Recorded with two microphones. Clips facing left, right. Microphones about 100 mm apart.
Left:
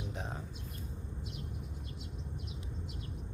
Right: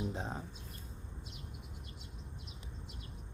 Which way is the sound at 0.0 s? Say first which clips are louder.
Right 3 dB; 30° right (ahead or behind).